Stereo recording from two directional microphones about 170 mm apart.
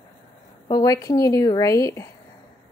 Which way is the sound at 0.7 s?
20° left (ahead or behind).